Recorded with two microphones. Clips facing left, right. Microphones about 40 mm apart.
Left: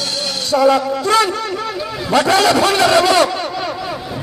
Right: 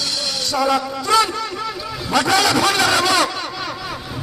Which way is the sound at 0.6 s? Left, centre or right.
Left.